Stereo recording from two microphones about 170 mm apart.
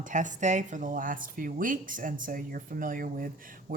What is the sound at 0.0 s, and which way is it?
Speech, 45° right (ahead or behind).